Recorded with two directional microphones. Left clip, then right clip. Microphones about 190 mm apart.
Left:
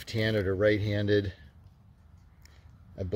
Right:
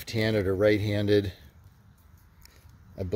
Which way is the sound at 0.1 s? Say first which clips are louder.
Right 2 dB; 10° right (ahead or behind).